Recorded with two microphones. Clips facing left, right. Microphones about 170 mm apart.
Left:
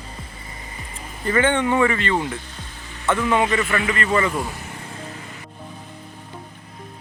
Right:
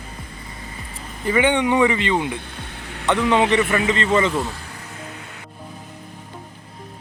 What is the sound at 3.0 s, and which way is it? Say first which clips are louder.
Speech: right 2 dB; 20° right (ahead or behind).